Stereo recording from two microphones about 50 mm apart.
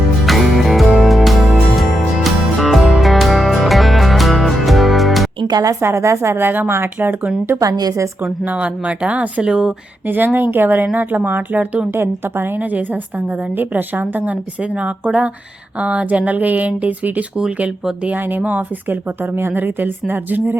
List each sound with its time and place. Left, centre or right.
0.3 s music: centre
5.8 s a woman's voice: right
6.4 s speech: right
8.4 s speech: right
10.1 s speech: right
11.9 s speech: right
12.5 s speech: right
14.6 s speech: right